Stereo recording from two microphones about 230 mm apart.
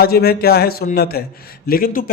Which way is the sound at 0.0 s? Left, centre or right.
Left.